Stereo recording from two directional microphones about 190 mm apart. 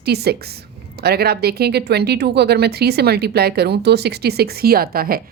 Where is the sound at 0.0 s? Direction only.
60° right (ahead or behind).